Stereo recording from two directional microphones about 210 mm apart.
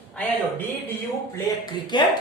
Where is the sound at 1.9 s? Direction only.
20° left (ahead or behind).